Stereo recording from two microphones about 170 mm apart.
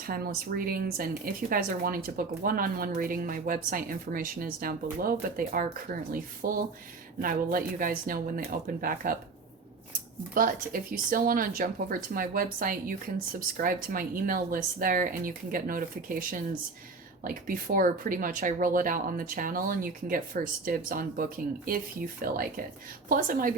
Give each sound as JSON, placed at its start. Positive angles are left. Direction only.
{"t": 0.0, "sound": "speech", "side_deg": -60}
{"t": 10.3, "sound": "speech", "side_deg": -55}